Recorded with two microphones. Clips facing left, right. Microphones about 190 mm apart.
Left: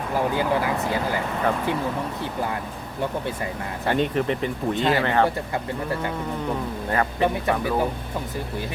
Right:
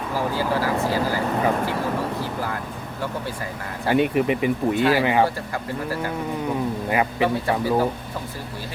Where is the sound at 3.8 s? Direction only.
10° right (ahead or behind).